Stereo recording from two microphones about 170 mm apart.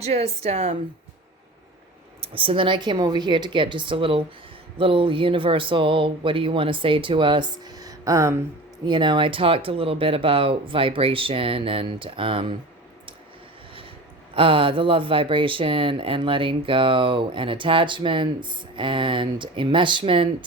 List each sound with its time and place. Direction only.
0.0 s speech: 40° right (ahead or behind)
2.2 s speech: 35° right (ahead or behind)
14.3 s speech: 30° right (ahead or behind)